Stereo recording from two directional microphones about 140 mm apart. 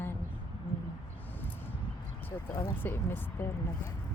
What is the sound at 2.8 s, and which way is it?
Speech, 15° left (ahead or behind).